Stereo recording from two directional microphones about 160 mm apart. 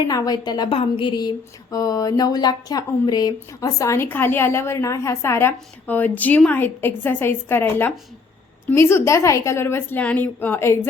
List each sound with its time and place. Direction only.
0.1 s a woman's voice: 25° left (ahead or behind)